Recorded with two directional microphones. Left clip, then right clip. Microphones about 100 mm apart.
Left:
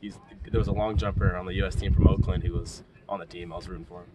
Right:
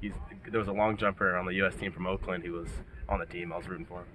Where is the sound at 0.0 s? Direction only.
35° left (ahead or behind).